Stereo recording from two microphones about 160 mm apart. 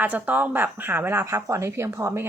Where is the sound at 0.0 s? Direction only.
10° right (ahead or behind).